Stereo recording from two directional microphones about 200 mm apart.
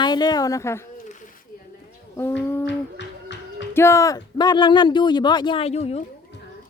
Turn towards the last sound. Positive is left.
turn(degrees=30)  # may be behind; listen again after turning